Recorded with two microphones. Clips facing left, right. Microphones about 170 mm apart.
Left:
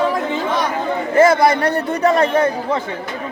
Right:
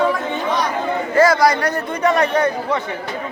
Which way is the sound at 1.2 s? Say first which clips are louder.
Left 2 dB; 25° left (ahead or behind).